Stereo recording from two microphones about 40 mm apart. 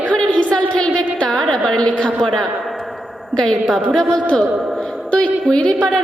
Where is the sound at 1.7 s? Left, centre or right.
Left.